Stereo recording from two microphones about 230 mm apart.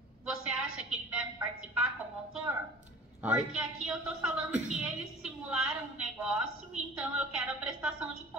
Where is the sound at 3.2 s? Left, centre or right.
Centre.